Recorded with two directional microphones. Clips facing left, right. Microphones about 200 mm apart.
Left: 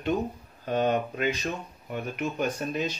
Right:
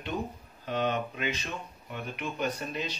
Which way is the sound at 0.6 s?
45° left (ahead or behind).